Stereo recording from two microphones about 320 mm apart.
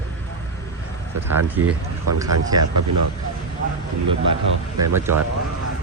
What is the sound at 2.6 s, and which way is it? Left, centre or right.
Speech, right.